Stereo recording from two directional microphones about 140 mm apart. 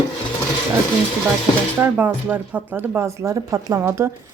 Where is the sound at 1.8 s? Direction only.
10° right (ahead or behind).